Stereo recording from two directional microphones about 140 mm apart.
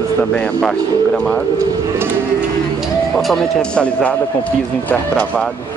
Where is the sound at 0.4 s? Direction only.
5° left (ahead or behind).